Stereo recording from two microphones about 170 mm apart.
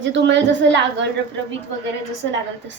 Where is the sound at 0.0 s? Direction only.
90° right.